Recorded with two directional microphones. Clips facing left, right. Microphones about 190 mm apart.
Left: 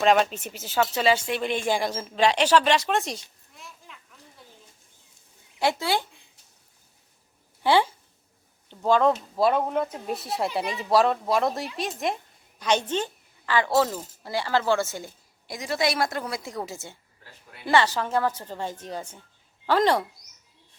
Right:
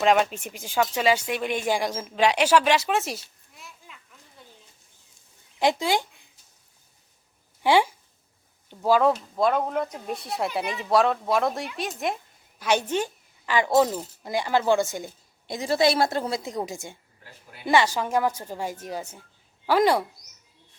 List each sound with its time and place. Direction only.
0.0 s speech: 10° right (ahead or behind)
5.5 s speech: 15° right (ahead or behind)
7.6 s a woman's voice: 15° right (ahead or behind)